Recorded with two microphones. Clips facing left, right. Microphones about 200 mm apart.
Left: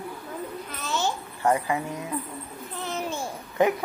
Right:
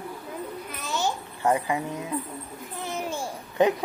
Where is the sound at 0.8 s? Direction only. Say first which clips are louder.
Even; 15° right (ahead or behind).